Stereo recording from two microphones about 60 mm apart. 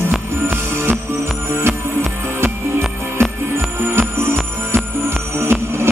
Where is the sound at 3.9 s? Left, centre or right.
Right.